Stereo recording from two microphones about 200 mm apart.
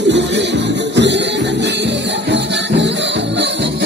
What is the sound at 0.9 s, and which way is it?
Music, 60° right (ahead or behind).